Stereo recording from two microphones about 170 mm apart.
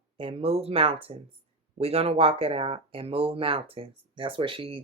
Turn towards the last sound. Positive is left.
turn(degrees=-30)  # may be behind; listen again after turning